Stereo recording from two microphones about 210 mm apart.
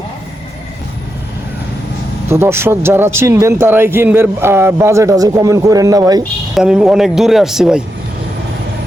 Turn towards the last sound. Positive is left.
turn(degrees=-5)  # may be behind; listen again after turning